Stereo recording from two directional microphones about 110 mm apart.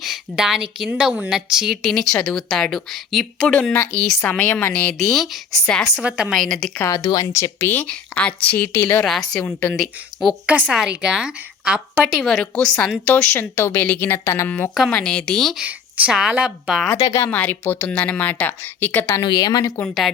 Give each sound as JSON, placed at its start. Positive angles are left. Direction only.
{"t": 0.0, "sound": "a woman's voice", "side_deg": -5}
{"t": 3.5, "sound": "speech", "side_deg": 10}
{"t": 6.0, "sound": "a woman's voice", "side_deg": -10}
{"t": 6.3, "sound": "a woman's voice", "side_deg": 5}
{"t": 6.7, "sound": "a woman's voice", "side_deg": 30}
{"t": 9.0, "sound": "a woman's voice", "side_deg": 0}
{"t": 9.4, "sound": "speech", "side_deg": 15}
{"t": 9.7, "sound": "a woman's voice", "side_deg": 0}
{"t": 15.6, "sound": "a woman's voice", "side_deg": -10}
{"t": 17.0, "sound": "a woman's voice", "side_deg": 35}
{"t": 17.2, "sound": "speech", "side_deg": 15}
{"t": 19.2, "sound": "a woman's voice", "side_deg": 40}
{"t": 19.8, "sound": "a woman's voice", "side_deg": 0}